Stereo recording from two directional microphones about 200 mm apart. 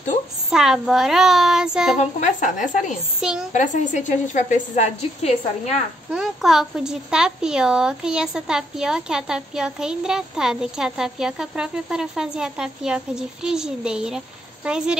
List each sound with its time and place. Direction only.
0.5 s a woman's voice: centre (ahead or behind)
2.0 s a woman's voice: 35° left (ahead or behind)
3.2 s a woman's voice: 5° right (ahead or behind)
3.5 s a woman's voice: 40° left (ahead or behind)
6.0 s a woman's voice: 5° right (ahead or behind)